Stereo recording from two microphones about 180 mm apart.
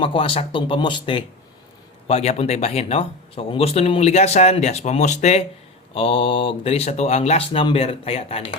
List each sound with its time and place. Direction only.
0.0 s speech: 30° left (ahead or behind)